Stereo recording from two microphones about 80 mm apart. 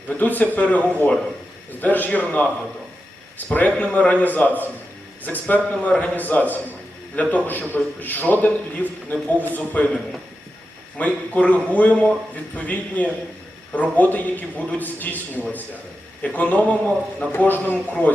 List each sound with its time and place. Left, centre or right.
0.1 s a man's voice: left
16.2 s a man's voice: centre